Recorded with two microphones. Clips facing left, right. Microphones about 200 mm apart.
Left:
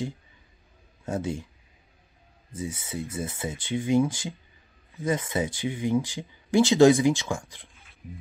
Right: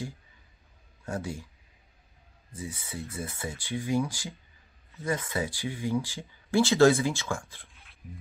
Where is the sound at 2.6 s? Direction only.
20° left (ahead or behind).